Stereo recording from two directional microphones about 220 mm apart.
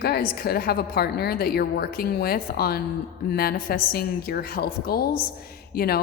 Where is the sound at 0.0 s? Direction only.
45° left (ahead or behind).